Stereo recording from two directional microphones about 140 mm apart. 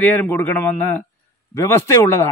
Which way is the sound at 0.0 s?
10° left (ahead or behind).